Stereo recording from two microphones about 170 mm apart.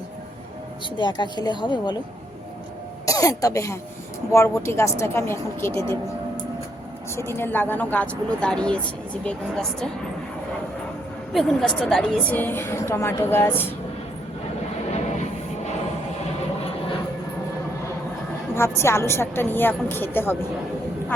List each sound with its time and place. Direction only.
0.9 s a woman's voice: 25° left (ahead or behind)
3.1 s a woman's voice: 20° left (ahead or behind)
7.2 s a woman's voice: 15° left (ahead or behind)
11.3 s a woman's voice: centre (ahead or behind)
14.8 s music: 40° left (ahead or behind)
18.5 s a woman's voice: 15° left (ahead or behind)